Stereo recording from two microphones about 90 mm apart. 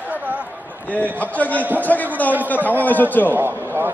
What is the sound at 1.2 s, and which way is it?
A man's voice, 15° left (ahead or behind).